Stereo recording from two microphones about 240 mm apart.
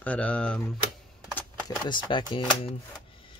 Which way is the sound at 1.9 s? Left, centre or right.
Centre.